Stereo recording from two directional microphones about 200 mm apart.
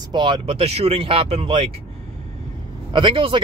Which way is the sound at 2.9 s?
25° right (ahead or behind).